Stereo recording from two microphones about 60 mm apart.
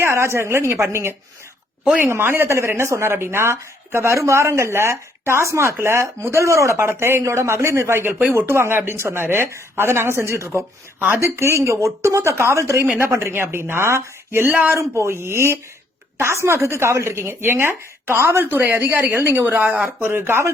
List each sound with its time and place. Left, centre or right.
0.0 s a woman's voice: right
6.7 s speech: right
14.8 s speech: right
20.1 s speech: right